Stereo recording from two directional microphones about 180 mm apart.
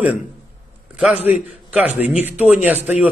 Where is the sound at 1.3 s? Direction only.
5° right (ahead or behind).